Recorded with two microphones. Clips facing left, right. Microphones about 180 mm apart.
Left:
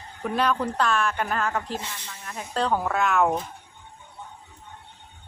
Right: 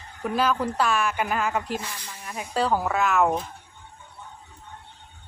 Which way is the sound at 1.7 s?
25° left (ahead or behind).